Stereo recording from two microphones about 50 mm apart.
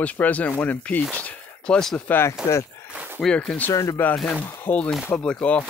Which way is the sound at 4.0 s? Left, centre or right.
Left.